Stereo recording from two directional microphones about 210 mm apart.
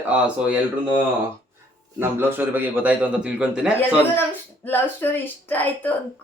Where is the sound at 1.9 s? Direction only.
10° right (ahead or behind).